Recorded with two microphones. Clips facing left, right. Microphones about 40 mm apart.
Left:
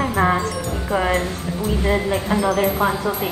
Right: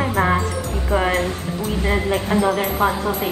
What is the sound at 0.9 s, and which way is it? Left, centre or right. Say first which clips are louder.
Speech: right 1 dB; centre.